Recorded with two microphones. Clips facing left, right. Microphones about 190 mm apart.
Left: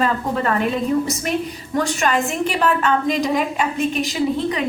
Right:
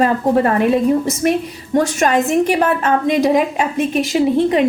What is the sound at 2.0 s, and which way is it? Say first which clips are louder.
Speech: right 6 dB; 40° right (ahead or behind).